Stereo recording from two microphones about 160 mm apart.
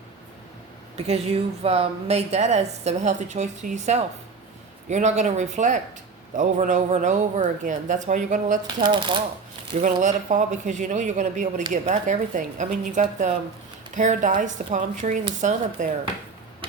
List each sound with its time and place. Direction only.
0.9 s a woman's voice: 40° right (ahead or behind)
8.8 s speech: 30° right (ahead or behind)
9.8 s a woman's voice: 50° right (ahead or behind)